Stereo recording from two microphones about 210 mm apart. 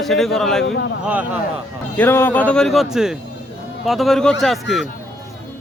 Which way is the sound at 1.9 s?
10° left (ahead or behind).